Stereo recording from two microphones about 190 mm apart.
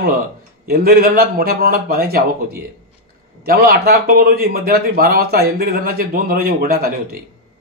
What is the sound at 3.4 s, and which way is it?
Speech, 50° right (ahead or behind).